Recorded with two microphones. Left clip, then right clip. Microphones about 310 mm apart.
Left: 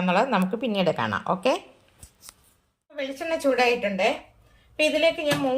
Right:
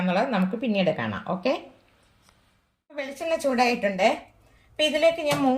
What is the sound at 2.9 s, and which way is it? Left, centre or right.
Speech, right.